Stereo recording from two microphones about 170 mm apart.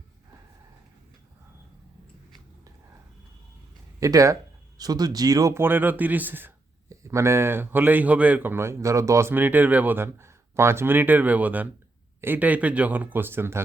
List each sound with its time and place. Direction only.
4.0 s speech: 20° right (ahead or behind)